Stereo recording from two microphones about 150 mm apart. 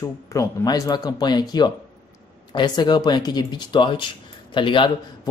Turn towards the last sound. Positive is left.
turn(degrees=35)  # may be behind; listen again after turning